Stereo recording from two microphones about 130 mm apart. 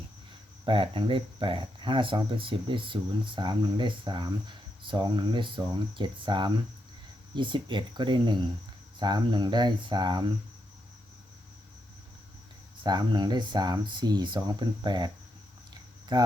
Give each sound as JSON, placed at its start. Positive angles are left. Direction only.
{"t": 0.6, "sound": "speech", "side_deg": -40}
{"t": 12.8, "sound": "speech", "side_deg": -35}